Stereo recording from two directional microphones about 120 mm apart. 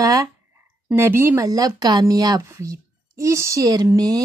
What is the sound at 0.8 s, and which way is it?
A woman's voice, 20° right (ahead or behind).